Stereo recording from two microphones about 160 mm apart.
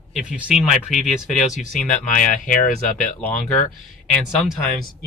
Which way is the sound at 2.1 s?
50° left (ahead or behind).